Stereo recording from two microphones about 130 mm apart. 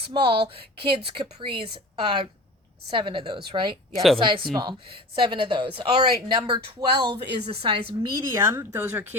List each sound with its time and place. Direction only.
0.0 s a woman's voice: 40° right (ahead or behind)
8.4 s speech: 15° right (ahead or behind)